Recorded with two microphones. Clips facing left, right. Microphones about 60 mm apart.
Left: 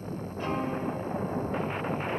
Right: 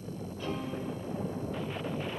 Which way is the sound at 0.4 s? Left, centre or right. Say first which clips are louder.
Left 6 dB; left.